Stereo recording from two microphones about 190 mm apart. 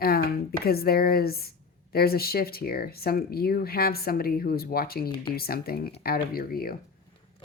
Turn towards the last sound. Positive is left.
turn(degrees=50)  # may be behind; listen again after turning